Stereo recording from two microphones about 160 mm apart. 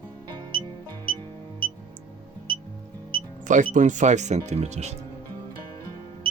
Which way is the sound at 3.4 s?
55° right (ahead or behind).